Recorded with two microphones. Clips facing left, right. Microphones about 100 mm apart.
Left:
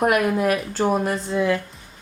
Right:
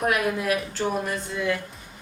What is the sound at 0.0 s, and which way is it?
A woman's voice, 45° left (ahead or behind).